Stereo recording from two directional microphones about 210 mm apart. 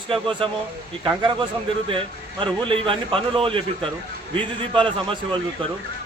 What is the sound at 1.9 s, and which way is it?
Speech, 25° right (ahead or behind).